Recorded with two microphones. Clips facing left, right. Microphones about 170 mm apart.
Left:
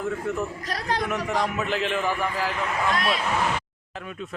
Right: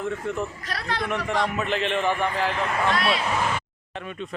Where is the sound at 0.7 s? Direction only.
40° left (ahead or behind).